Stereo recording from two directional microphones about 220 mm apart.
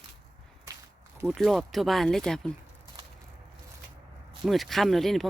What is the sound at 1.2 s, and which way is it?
Speech, centre (ahead or behind).